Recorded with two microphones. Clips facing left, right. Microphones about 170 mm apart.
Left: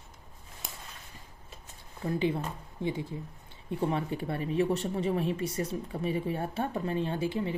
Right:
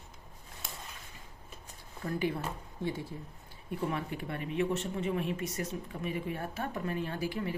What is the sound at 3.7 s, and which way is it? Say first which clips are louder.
Speech: left 4 dB; 30° left (ahead or behind).